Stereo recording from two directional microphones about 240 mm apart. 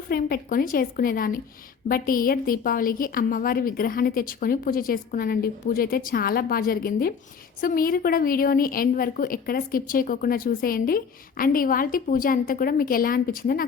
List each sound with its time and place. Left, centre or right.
0.1 s a woman's voice: left